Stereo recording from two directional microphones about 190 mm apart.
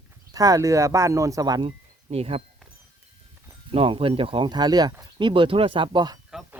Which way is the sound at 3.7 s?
30° right (ahead or behind).